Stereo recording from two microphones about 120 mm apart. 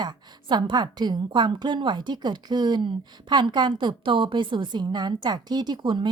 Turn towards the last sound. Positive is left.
turn(degrees=-40)  # may be behind; listen again after turning